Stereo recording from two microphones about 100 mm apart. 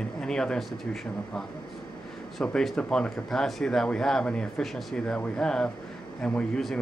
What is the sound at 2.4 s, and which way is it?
Speech, 5° left (ahead or behind).